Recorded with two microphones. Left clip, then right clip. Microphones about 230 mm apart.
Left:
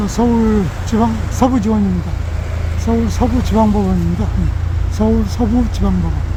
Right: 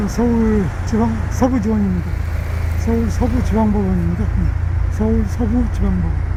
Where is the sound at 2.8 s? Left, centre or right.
Centre.